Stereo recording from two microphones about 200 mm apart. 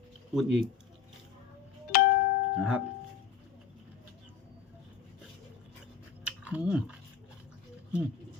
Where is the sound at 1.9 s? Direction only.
45° left (ahead or behind).